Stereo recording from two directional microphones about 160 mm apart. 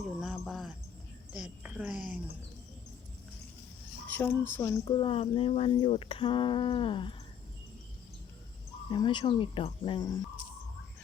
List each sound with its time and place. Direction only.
0.2 s a sound: centre (ahead or behind)
1.3 s a woman's voice: 5° right (ahead or behind)
4.1 s speech: 15° left (ahead or behind)
4.9 s speech: 30° left (ahead or behind)
8.9 s speech: 30° left (ahead or behind)